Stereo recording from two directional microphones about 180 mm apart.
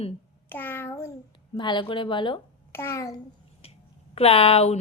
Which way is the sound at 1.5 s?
25° left (ahead or behind).